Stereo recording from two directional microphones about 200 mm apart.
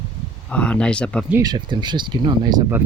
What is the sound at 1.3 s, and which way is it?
Speech, 20° right (ahead or behind).